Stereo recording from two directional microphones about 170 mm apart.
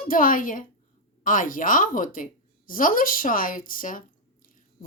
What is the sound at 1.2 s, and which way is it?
A woman's voice, 50° left (ahead or behind).